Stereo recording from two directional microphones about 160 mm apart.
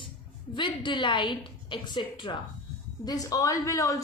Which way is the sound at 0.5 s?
30° left (ahead or behind).